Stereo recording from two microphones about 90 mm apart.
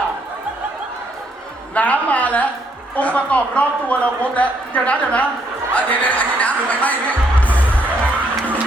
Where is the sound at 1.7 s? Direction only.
15° left (ahead or behind).